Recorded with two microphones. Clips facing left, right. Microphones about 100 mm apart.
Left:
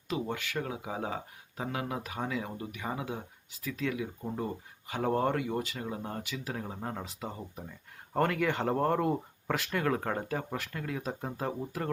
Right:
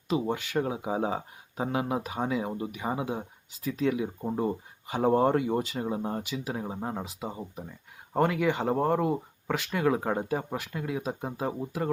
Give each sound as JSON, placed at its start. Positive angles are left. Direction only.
{"t": 0.1, "sound": "speech", "side_deg": -25}